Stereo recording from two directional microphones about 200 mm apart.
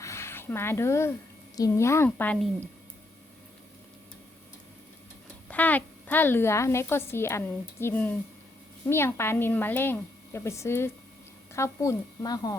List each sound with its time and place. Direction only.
0.0 s a sound: 15° left (ahead or behind)
1.5 s a woman's voice: 15° left (ahead or behind)
5.5 s a woman's voice: 10° left (ahead or behind)